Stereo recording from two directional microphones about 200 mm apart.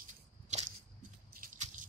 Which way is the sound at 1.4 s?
40° right (ahead or behind).